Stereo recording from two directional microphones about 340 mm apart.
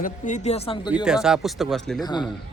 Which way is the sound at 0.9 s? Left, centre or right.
Centre.